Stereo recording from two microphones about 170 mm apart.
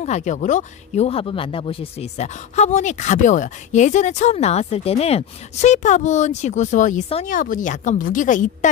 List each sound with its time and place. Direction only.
0.0 s speech: 45° left (ahead or behind)